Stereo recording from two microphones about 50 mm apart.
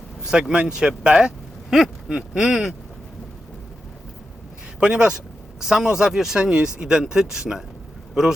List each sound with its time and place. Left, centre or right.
0.3 s speech: centre
4.8 s speech: right